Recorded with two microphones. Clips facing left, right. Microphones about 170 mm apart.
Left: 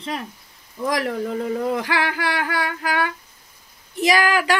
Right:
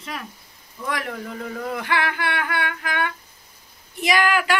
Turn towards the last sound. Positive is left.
turn(degrees=35)  # may be behind; listen again after turning